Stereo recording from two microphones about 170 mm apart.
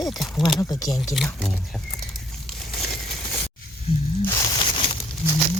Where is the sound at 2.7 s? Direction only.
70° left (ahead or behind).